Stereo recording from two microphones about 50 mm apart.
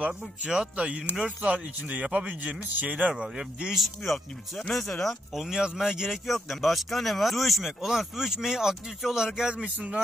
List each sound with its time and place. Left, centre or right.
0.5 s speech: right
3.2 s speech: centre
3.7 s speech: centre
5.3 s speech: centre